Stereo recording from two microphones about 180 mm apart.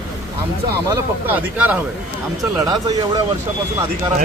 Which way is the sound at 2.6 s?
20° right (ahead or behind).